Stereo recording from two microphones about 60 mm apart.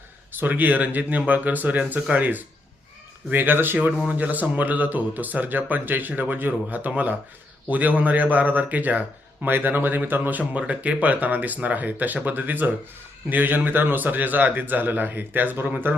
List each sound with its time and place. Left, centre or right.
0.3 s speech: right